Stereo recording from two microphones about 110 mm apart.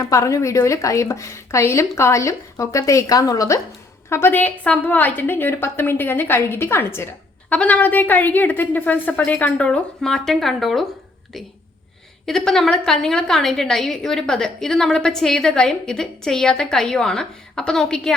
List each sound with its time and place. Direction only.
0.0 s a woman's voice: 25° left (ahead or behind)
4.1 s a woman's voice: 20° left (ahead or behind); by 10.8 s centre (ahead or behind)
12.2 s a woman's voice: 5° left (ahead or behind)